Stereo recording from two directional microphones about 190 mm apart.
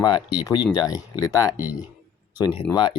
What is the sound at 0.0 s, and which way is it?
Speech, 25° left (ahead or behind).